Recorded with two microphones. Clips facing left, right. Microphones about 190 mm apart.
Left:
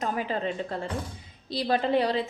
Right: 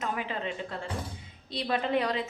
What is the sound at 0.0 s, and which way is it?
A woman's voice, 40° left (ahead or behind).